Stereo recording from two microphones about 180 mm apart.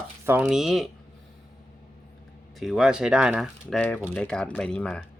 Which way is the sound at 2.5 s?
Centre (ahead or behind).